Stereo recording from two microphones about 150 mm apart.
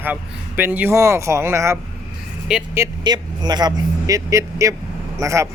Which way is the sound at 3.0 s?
30° right (ahead or behind).